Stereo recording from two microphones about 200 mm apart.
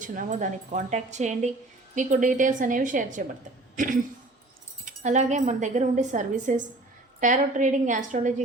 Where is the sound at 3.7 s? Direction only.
40° right (ahead or behind).